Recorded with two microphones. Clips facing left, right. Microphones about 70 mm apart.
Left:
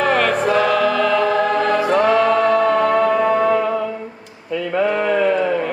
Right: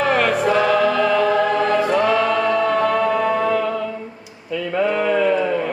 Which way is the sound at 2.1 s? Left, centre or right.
Left.